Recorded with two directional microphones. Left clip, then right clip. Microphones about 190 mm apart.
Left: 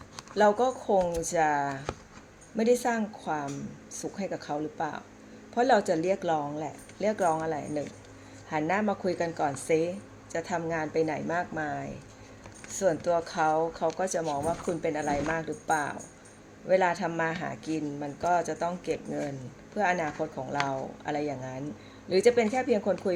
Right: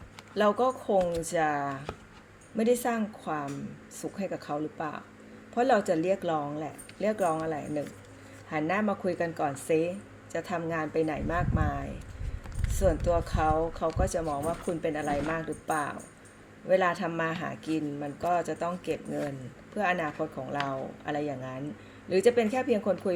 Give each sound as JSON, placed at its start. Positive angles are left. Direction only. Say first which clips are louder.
{"t": 0.3, "sound": "a woman's voice", "louder": "left 2 dB", "side_deg": -5}